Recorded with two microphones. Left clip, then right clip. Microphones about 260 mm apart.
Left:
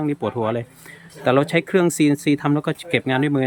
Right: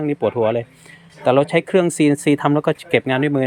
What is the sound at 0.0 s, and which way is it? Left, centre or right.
Speech, centre.